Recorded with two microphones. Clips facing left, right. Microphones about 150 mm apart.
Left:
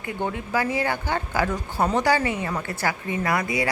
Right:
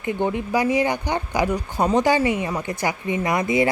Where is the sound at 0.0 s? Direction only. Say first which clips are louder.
Right 5 dB; 20° right (ahead or behind).